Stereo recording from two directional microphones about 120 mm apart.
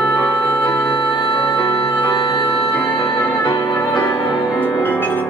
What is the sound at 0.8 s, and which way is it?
Music, 40° left (ahead or behind).